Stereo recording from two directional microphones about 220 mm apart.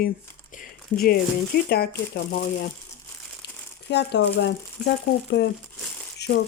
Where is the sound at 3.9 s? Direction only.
50° left (ahead or behind).